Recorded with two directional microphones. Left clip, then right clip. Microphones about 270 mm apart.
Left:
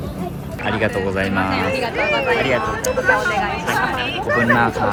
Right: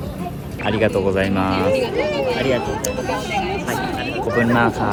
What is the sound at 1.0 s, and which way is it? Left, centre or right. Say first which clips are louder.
Speech: right 1 dB; centre.